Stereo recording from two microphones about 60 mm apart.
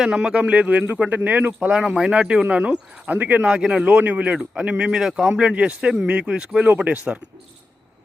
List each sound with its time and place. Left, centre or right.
0.0 s speech: centre; by 1.5 s right
1.7 s speech: centre